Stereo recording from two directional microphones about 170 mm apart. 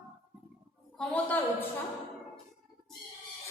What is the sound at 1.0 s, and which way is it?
Speech, 5° left (ahead or behind).